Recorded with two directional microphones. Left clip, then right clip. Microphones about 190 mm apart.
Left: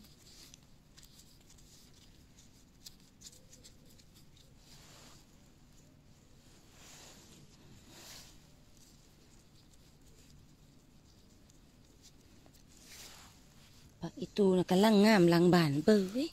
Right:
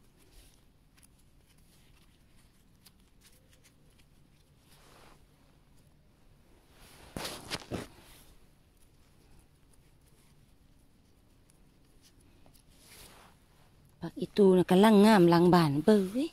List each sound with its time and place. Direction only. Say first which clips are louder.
13.9 s speech: right 6 dB; 40° right (ahead or behind); by 16.3 s 10° right (ahead or behind)